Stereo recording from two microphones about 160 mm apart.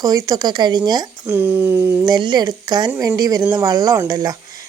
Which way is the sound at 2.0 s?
25° right (ahead or behind).